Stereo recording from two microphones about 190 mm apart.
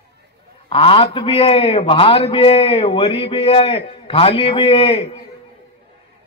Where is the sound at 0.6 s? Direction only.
30° left (ahead or behind).